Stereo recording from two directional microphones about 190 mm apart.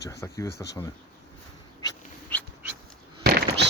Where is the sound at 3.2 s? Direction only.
60° right (ahead or behind).